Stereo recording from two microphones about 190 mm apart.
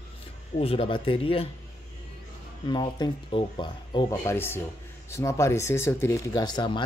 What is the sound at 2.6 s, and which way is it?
Speech, 25° left (ahead or behind).